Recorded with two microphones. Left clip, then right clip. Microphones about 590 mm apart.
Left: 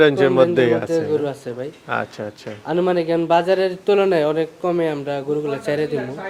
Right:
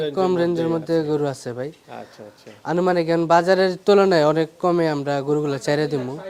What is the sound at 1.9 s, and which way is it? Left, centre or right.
Speech, left.